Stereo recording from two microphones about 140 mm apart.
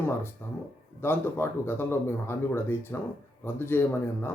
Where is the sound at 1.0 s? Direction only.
15° left (ahead or behind).